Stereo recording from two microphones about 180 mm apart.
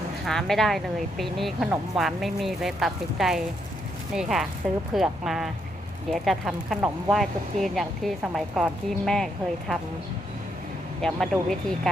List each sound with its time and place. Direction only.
0.3 s speech: centre (ahead or behind)
11.0 s speech: centre (ahead or behind)